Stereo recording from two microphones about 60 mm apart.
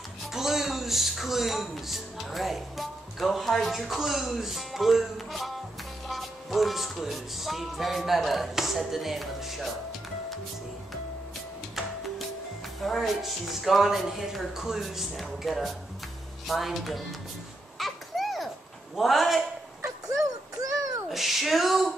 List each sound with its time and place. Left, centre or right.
0.3 s speech: centre
12.8 s speech: centre
17.7 s a sound: centre
18.9 s speech: centre
20.6 s a sound: right
21.1 s speech: centre